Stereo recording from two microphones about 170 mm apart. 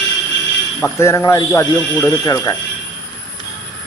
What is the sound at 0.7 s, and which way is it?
A man's voice, 15° left (ahead or behind).